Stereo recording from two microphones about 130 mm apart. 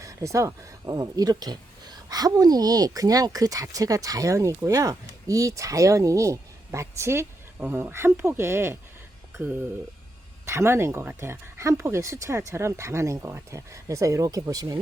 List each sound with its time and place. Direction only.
0.0 s speech: 25° right (ahead or behind)
10.4 s speech: 20° right (ahead or behind)